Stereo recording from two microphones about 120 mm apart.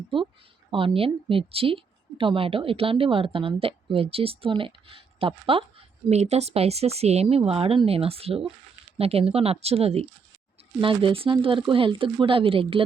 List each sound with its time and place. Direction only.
0.7 s a woman's voice: 45° right (ahead or behind)
6.1 s a woman's voice: 65° right (ahead or behind)
10.8 s a woman's voice: 45° right (ahead or behind)